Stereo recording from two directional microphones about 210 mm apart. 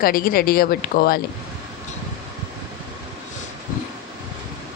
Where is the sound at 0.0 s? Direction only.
45° left (ahead or behind).